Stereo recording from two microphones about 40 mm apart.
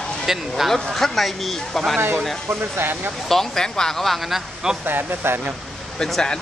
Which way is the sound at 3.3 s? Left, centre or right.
Centre.